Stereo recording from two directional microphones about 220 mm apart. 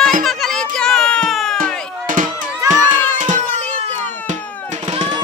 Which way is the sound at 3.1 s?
35° right (ahead or behind).